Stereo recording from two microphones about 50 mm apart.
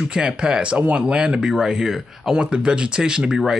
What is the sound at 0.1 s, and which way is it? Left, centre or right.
Speech, centre.